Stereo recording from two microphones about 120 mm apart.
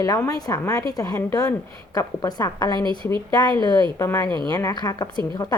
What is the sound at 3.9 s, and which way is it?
A woman's voice, 20° left (ahead or behind).